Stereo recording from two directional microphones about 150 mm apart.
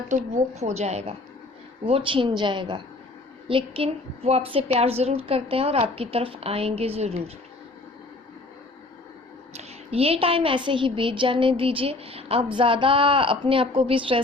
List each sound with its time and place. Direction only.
0.1 s a woman's voice: 50° right (ahead or behind)
9.5 s a woman's voice: 45° right (ahead or behind)